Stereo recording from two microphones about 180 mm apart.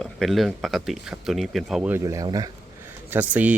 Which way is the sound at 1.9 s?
20° right (ahead or behind).